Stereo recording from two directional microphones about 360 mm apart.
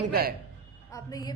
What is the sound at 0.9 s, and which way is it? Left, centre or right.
Speech, centre.